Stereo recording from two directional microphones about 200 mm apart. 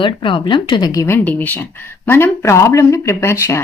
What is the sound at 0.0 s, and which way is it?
A woman's voice, 25° left (ahead or behind).